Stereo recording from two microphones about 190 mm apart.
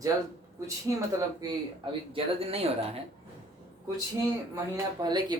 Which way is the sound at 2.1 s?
30° right (ahead or behind).